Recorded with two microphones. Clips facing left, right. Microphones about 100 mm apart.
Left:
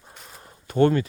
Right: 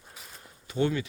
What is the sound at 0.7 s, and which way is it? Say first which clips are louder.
Speech: left 8 dB; 50° left (ahead or behind).